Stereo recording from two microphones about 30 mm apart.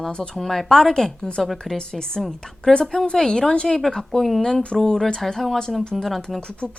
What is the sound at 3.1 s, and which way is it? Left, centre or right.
Speech, centre.